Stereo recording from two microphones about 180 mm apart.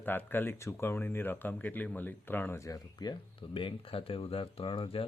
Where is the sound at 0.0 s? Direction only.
10° left (ahead or behind).